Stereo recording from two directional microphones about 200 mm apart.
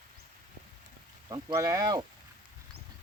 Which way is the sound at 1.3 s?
20° right (ahead or behind).